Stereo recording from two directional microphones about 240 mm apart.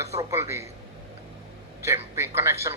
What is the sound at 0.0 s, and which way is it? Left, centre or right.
Speech, centre.